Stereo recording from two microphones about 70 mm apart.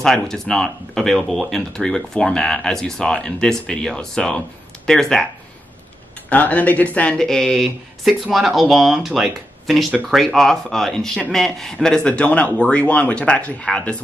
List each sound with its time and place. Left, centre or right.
0.0 s speech: centre
6.2 s speech: left
7.2 s speech: centre